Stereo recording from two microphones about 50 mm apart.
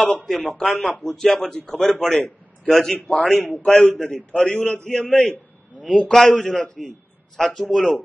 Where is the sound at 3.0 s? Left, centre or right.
Left.